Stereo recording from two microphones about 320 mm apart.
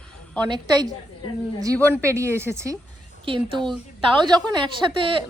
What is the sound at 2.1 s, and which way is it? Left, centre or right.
A woman's voice, centre.